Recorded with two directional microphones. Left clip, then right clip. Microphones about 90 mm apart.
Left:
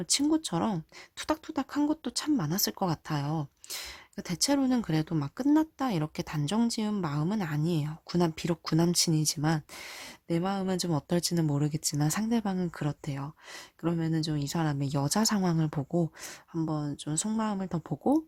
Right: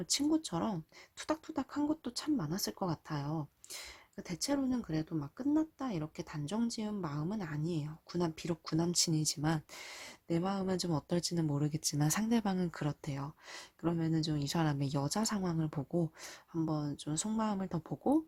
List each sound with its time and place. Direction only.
0.0 s speech: 25° left (ahead or behind); by 4.6 s 45° left (ahead or behind)
4.6 s speech: 70° left (ahead or behind)
9.0 s speech: 40° left (ahead or behind); by 15.0 s 15° left (ahead or behind)
15.0 s speech: 30° left (ahead or behind)
16.2 s speech: 20° left (ahead or behind)